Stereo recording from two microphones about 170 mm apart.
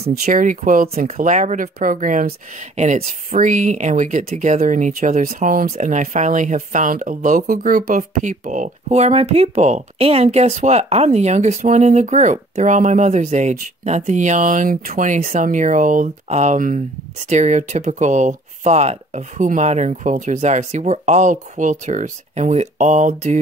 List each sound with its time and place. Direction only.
0.2 s speech: 50° right (ahead or behind)